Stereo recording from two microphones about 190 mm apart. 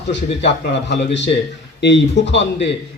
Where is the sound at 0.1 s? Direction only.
70° left (ahead or behind).